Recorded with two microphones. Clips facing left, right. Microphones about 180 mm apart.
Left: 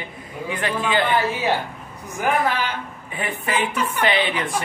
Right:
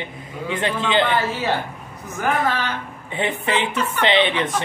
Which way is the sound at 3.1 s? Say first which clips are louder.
Right 2 dB; 25° right (ahead or behind).